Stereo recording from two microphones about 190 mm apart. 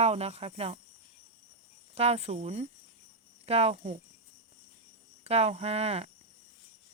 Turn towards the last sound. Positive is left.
turn(degrees=-35)  # may be behind; listen again after turning